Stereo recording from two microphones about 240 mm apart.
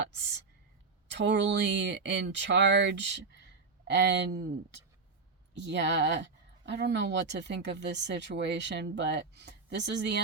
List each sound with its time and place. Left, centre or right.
1.0 s speech: right